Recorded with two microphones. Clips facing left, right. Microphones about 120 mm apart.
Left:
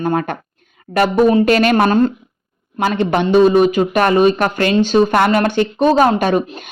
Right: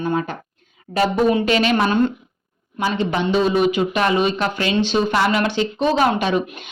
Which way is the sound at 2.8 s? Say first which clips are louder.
Left 5 dB; 60° left (ahead or behind).